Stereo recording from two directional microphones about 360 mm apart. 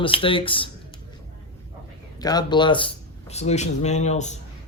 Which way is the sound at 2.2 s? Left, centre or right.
Centre.